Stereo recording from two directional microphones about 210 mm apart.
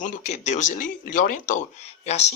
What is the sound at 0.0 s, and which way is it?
Speech, 35° left (ahead or behind).